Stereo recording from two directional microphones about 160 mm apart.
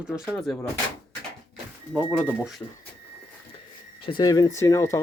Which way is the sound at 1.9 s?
5° right (ahead or behind).